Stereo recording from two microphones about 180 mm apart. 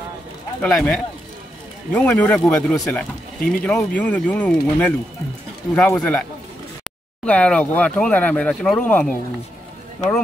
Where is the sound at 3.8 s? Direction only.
10° left (ahead or behind).